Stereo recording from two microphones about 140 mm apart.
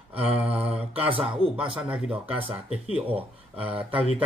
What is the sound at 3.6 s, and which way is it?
Music, 10° right (ahead or behind).